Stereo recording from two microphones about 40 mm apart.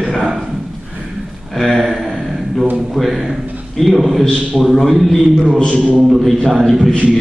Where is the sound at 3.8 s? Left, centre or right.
Centre.